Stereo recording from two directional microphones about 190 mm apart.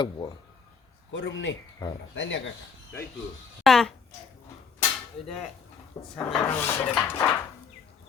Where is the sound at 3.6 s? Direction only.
Centre (ahead or behind).